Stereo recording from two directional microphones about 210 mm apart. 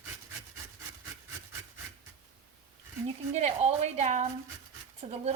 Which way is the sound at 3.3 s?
30° right (ahead or behind).